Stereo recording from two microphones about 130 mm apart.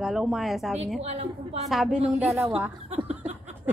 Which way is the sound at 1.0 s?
55° right (ahead or behind).